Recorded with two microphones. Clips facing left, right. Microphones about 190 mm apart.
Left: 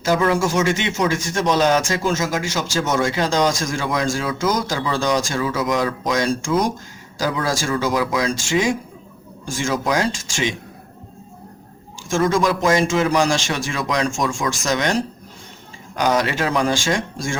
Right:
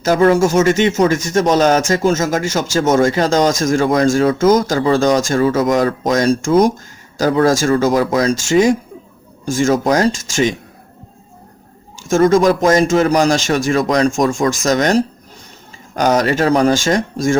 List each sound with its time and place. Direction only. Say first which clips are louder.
0.0 s speech: right 6 dB; 45° right (ahead or behind)
12.0 s speech: right 7 dB; 45° right (ahead or behind)